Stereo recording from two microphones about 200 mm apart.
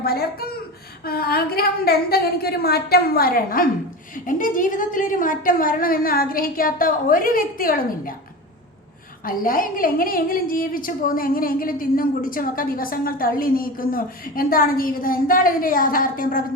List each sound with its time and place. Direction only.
0.0 s a woman's voice: 50° left (ahead or behind)
9.2 s a woman's voice: 45° left (ahead or behind)